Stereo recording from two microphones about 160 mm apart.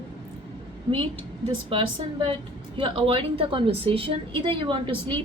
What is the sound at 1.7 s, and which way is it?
A woman's voice, 35° right (ahead or behind).